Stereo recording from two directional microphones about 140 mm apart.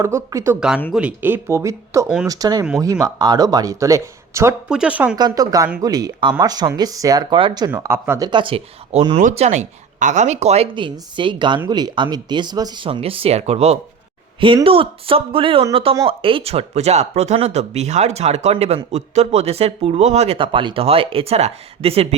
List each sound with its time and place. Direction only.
0.0 s speech: 20° right (ahead or behind)
4.7 s speech: 10° right (ahead or behind)
5.1 s speech: 30° right (ahead or behind)
7.8 s speech: 15° right (ahead or behind)
8.2 s speech: 35° right (ahead or behind); by 10.7 s 50° right (ahead or behind)
10.8 s speech: 35° right (ahead or behind)